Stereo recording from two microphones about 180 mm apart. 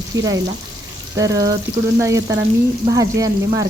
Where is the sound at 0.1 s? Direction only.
20° right (ahead or behind).